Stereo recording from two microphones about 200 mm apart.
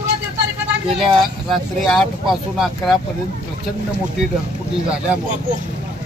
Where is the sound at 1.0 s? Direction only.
Centre (ahead or behind).